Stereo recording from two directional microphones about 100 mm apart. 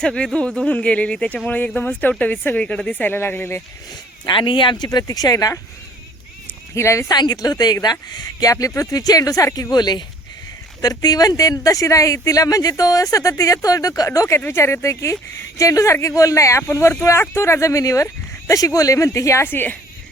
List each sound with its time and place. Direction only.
0.0 s speech: 10° left (ahead or behind)
4.3 s speech: 55° left (ahead or behind)
4.9 s speech: 35° left (ahead or behind)
6.7 s speech: 30° left (ahead or behind)
7.1 s speech: 40° left (ahead or behind); by 19.7 s 20° left (ahead or behind)